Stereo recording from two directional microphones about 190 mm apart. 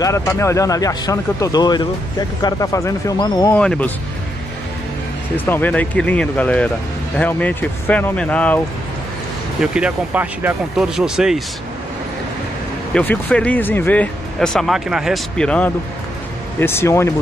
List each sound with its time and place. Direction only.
0.0 s speech: 15° left (ahead or behind)
3.5 s speech: 5° left (ahead or behind)
5.4 s speech: 10° left (ahead or behind)
9.6 s speech: 5° right (ahead or behind)
12.9 s speech: 10° left (ahead or behind)